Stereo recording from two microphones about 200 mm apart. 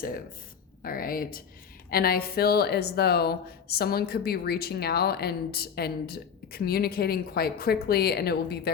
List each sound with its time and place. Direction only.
0.8 s speech: 45° left (ahead or behind)